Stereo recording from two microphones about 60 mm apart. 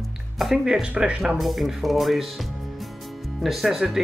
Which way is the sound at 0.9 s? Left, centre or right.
Right.